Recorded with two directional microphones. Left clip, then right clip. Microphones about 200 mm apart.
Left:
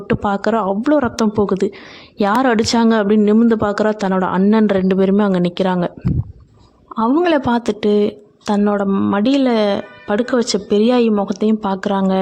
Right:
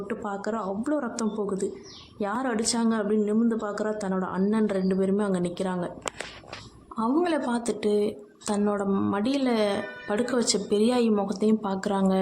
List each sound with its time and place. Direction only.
0.1 s speech: 45° left (ahead or behind)
6.9 s speech: 40° left (ahead or behind)